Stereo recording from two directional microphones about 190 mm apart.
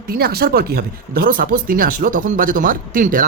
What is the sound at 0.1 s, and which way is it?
Speech, 55° right (ahead or behind).